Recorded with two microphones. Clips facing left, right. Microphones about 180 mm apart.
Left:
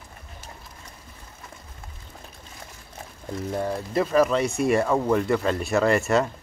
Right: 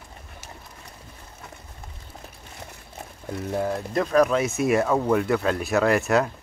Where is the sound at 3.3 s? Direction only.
Centre (ahead or behind).